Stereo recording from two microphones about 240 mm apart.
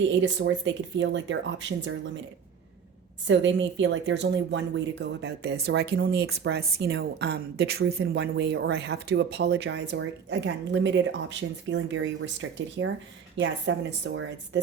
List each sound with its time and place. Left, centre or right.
0.2 s speech: right
3.2 s speech: right